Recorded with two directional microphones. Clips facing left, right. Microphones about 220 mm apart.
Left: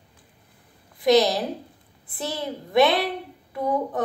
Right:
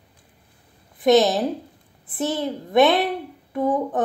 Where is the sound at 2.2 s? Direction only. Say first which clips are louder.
Right 6 dB; 20° right (ahead or behind).